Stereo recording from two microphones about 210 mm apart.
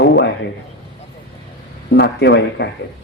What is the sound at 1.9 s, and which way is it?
Speech, 55° left (ahead or behind).